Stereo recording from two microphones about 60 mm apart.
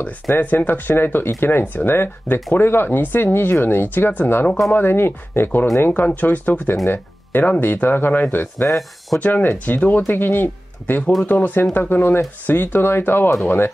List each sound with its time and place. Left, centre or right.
0.4 s speech: left
8.6 s speech: centre
9.2 s speech: left